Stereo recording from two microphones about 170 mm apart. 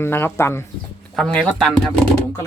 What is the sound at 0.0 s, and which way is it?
Speech, 15° left (ahead or behind).